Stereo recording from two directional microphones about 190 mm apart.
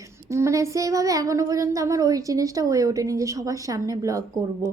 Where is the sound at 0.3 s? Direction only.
15° right (ahead or behind).